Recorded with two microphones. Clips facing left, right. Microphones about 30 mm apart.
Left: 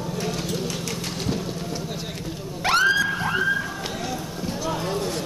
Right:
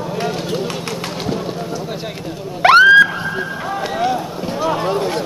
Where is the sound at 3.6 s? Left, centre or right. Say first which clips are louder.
Right 9 dB; right.